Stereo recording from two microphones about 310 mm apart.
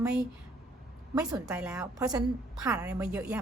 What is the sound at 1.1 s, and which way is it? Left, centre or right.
A woman's voice, centre.